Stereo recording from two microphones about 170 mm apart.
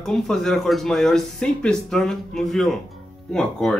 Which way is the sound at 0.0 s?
Centre (ahead or behind).